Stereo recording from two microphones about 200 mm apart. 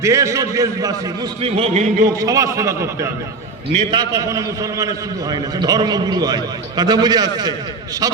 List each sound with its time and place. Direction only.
0.0 s a man's voice: 15° right (ahead or behind); by 2.0 s 35° right (ahead or behind)
2.1 s a man's voice: 15° right (ahead or behind)